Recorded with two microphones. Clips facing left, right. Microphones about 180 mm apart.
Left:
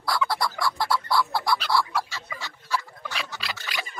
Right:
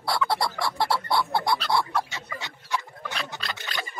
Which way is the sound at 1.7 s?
20° right (ahead or behind).